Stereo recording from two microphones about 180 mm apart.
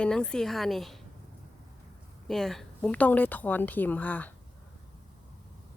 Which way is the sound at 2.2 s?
Centre (ahead or behind).